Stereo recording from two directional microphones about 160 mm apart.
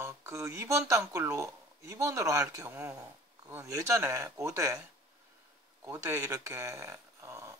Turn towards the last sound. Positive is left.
turn(degrees=-20)  # may be behind; listen again after turning